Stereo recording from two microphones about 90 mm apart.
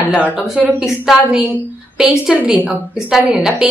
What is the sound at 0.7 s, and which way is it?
A woman's voice, 5° right (ahead or behind).